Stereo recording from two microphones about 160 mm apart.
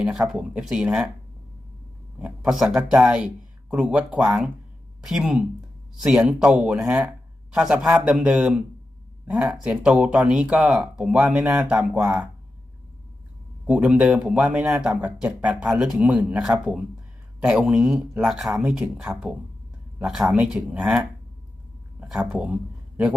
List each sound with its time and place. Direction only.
0.0 s speech: 5° right (ahead or behind)
2.1 s speech: 5° right (ahead or behind)
13.7 s speech: 10° right (ahead or behind)
22.0 s speech: 5° right (ahead or behind)